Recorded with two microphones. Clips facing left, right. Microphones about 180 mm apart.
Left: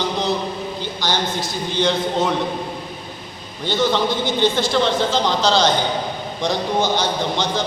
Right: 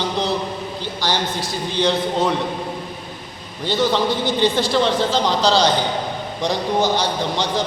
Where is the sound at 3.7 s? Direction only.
35° right (ahead or behind).